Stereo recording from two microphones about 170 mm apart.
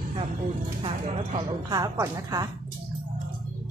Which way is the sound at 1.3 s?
20° right (ahead or behind).